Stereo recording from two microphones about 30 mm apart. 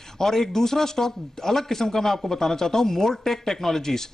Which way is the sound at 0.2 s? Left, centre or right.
Centre.